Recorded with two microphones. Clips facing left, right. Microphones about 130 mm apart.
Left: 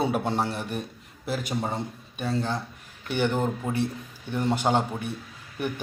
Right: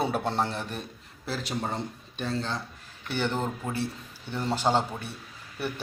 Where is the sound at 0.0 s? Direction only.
10° left (ahead or behind).